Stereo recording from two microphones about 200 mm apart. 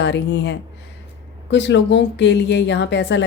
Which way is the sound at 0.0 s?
60° left (ahead or behind).